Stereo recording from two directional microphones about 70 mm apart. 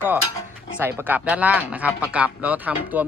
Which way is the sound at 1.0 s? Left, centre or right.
Right.